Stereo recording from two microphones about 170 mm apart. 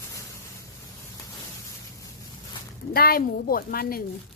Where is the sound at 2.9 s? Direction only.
60° left (ahead or behind).